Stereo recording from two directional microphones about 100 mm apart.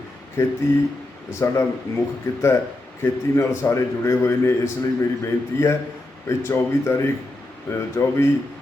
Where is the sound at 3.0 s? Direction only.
30° left (ahead or behind).